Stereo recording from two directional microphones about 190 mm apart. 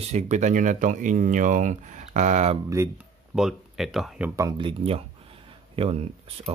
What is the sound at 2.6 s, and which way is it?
Speech, 15° right (ahead or behind).